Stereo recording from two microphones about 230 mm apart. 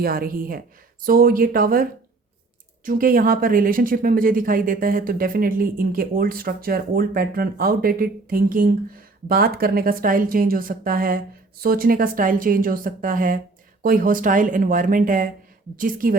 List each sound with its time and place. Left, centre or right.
0.0 s speech: right